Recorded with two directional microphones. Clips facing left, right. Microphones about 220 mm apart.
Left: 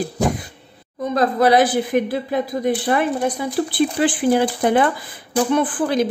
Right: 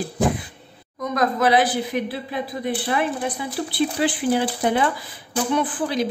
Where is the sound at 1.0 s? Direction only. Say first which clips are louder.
Left 4 dB; 30° left (ahead or behind).